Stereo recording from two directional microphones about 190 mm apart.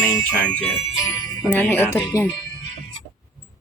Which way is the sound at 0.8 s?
25° left (ahead or behind).